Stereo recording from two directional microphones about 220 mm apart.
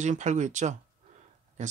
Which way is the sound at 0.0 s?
35° right (ahead or behind).